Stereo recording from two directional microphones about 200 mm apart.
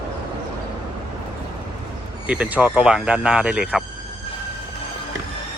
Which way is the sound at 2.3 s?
5° right (ahead or behind).